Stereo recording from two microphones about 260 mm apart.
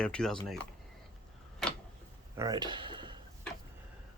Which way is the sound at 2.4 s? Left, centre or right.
Centre.